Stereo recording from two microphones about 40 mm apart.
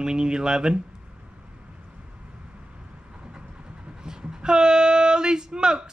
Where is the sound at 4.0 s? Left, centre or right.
Centre.